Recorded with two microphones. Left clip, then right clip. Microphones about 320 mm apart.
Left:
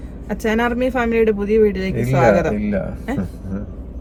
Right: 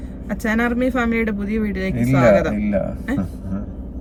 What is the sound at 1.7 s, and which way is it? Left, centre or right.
Speech, left.